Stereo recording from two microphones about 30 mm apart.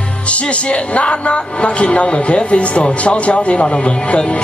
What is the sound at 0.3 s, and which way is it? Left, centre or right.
A man's voice, left.